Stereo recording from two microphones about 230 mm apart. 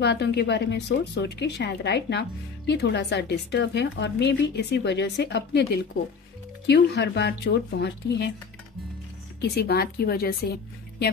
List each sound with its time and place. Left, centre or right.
0.0 s speech: left
6.7 s speech: left
9.4 s speech: left